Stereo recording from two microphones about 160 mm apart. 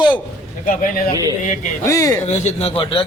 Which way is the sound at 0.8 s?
60° left (ahead or behind).